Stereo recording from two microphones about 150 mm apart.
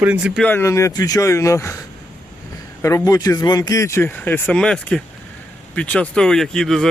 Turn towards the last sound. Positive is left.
turn(degrees=5)  # may be behind; listen again after turning